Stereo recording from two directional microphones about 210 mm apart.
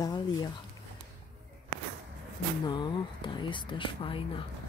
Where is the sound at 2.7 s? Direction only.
20° left (ahead or behind).